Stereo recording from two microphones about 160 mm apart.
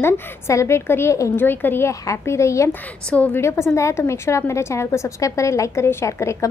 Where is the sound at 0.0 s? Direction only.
15° left (ahead or behind).